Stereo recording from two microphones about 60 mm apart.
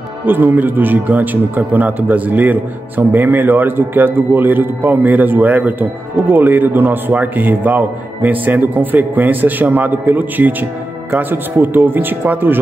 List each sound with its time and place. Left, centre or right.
0.2 s speech: right